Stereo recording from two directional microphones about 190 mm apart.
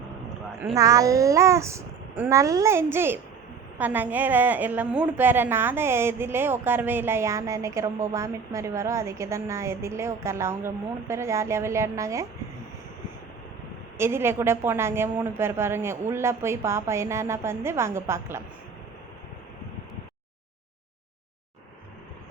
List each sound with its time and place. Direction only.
0.6 s a woman's voice: 15° right (ahead or behind)
14.0 s a woman's voice: 15° right (ahead or behind)